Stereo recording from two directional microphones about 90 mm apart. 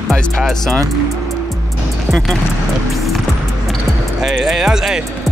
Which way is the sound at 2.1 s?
Centre (ahead or behind).